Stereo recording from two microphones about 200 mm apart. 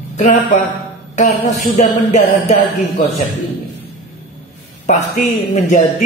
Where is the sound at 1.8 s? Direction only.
35° left (ahead or behind).